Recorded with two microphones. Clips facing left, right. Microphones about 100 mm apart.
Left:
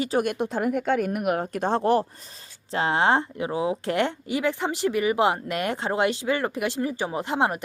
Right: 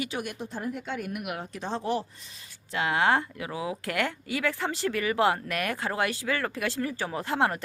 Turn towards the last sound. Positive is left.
turn(degrees=20)  # may be behind; listen again after turning